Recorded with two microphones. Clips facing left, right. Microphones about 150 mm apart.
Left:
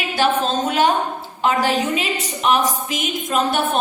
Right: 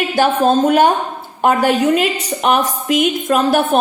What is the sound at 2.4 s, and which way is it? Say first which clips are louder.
A woman's voice: right 3 dB; 60° right (ahead or behind).